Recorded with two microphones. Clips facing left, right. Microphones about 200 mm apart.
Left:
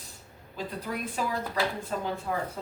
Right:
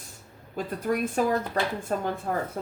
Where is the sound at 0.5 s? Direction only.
50° right (ahead or behind).